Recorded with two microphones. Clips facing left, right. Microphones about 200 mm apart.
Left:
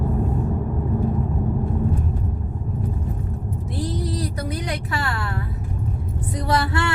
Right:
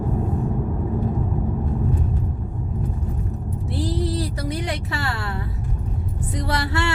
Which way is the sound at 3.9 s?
30° right (ahead or behind).